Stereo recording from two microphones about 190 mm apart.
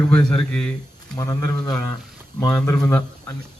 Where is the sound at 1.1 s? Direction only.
20° left (ahead or behind).